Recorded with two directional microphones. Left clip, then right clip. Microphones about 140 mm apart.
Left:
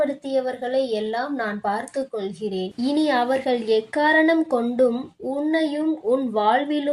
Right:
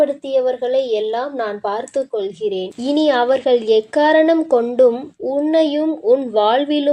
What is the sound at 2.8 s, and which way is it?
A woman's voice, 10° right (ahead or behind).